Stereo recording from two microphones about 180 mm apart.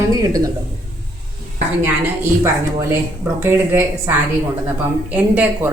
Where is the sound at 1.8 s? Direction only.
15° right (ahead or behind).